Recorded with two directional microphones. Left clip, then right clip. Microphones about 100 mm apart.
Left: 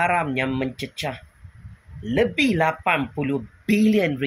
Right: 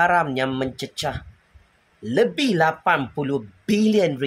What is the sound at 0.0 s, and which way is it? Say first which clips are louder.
Speech: right 3 dB; 40° right (ahead or behind).